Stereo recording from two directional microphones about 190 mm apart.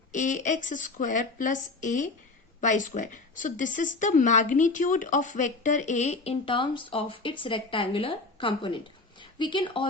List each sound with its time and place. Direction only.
0.1 s speech: 40° left (ahead or behind)